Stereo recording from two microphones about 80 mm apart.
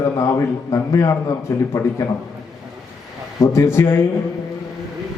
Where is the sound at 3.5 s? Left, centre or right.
Left.